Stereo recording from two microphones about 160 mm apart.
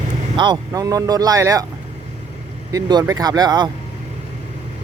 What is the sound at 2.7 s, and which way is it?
Speech, 25° right (ahead or behind).